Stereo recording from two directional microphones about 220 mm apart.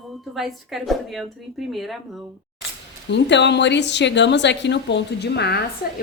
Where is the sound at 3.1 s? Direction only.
50° left (ahead or behind).